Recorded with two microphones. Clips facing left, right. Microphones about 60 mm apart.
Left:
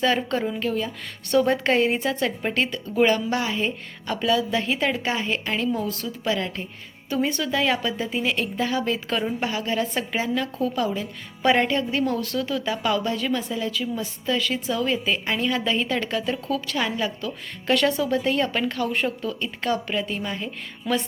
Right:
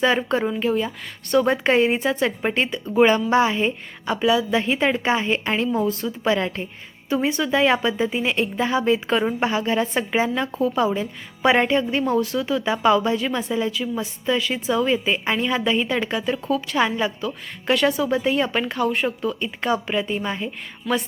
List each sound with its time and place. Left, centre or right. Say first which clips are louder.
0.0 s a woman's voice: right 3 dB; centre
1.3 s a woman's voice: right 2 dB; centre; by 6.7 s right
7.1 s a woman's voice: right 3 dB; centre
20.9 s music: right 2 dB; centre